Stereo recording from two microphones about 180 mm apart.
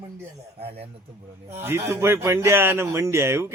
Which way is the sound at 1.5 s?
15° right (ahead or behind).